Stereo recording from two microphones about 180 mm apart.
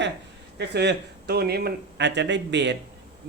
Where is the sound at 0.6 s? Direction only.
65° right (ahead or behind).